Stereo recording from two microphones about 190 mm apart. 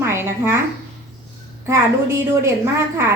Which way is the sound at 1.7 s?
15° right (ahead or behind).